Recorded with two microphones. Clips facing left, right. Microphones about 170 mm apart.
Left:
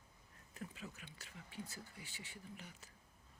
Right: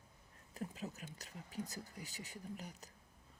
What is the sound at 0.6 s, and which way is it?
Speech, 40° right (ahead or behind).